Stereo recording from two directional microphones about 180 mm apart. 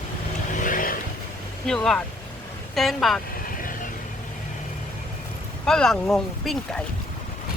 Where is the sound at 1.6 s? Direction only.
5° left (ahead or behind).